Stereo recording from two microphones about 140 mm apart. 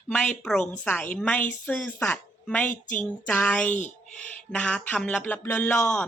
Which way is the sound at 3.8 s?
60° left (ahead or behind).